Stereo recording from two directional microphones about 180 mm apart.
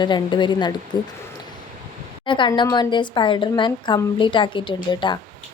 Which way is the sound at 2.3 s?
25° left (ahead or behind).